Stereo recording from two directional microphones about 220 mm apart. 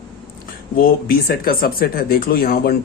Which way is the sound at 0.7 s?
40° left (ahead or behind).